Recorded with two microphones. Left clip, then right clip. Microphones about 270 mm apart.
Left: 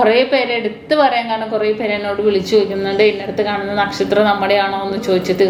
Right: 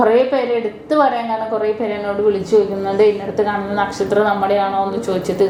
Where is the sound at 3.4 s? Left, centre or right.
Right.